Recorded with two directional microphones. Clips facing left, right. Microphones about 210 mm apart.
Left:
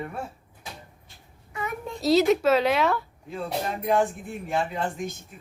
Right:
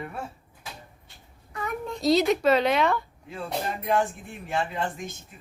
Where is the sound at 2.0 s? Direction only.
5° left (ahead or behind).